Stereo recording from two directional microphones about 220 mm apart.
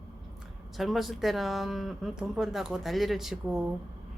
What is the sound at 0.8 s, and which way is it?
Speech, centre (ahead or behind).